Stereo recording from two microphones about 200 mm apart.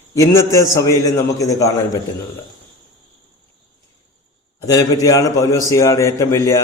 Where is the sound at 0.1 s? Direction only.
15° left (ahead or behind).